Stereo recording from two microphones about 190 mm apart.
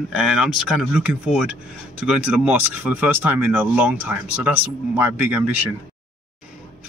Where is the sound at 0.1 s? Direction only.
5° right (ahead or behind).